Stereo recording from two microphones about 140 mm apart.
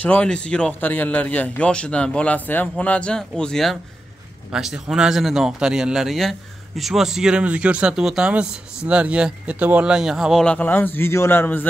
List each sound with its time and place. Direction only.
0.0 s a man's voice: 10° left (ahead or behind)
10.4 s a man's voice: 10° left (ahead or behind)